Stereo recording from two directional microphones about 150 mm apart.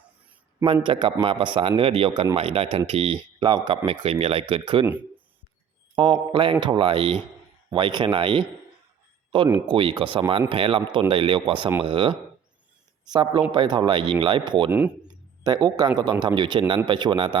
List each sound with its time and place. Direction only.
0.6 s speech: 35° right (ahead or behind)
6.0 s speech: 30° right (ahead or behind)
14.7 s speech: 10° right (ahead or behind)
15.0 s bird: 25° right (ahead or behind)
16.2 s speech: 30° right (ahead or behind)